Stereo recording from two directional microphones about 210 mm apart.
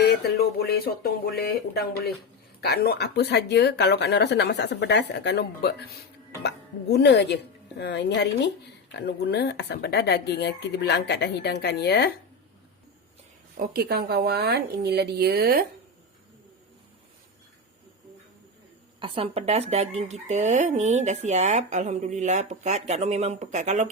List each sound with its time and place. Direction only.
0.0 s a woman's voice: 50° left (ahead or behind)
6.9 s a woman's voice: 55° left (ahead or behind)
13.7 s a woman's voice: 50° right (ahead or behind)
18.9 s speech: 25° right (ahead or behind)